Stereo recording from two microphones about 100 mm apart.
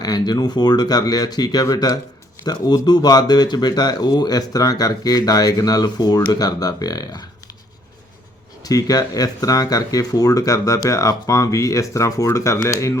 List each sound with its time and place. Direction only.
0.0 s speech: 40° left (ahead or behind)
8.6 s speech: 40° left (ahead or behind)